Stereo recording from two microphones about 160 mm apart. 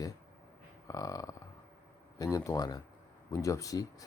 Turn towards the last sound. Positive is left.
turn(degrees=20)  # may be behind; listen again after turning